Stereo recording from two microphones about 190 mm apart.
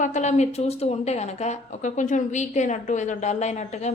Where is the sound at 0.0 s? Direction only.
40° left (ahead or behind).